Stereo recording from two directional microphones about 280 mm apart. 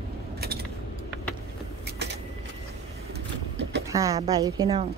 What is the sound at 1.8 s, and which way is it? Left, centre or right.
Vehicle, right.